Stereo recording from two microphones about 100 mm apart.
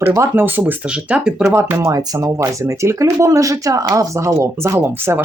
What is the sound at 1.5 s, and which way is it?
Speech, 25° right (ahead or behind).